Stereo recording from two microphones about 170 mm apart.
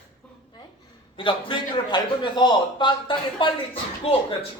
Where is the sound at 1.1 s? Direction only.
30° left (ahead or behind).